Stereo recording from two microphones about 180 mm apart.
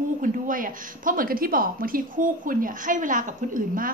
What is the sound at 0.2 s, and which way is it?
A woman's voice, 50° right (ahead or behind).